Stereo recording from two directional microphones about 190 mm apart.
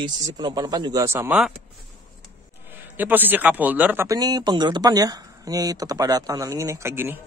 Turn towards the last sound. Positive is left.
turn(degrees=-15)  # may be behind; listen again after turning